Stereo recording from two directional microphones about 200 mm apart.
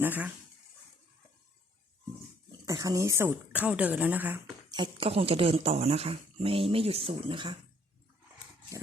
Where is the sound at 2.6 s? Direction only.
15° right (ahead or behind).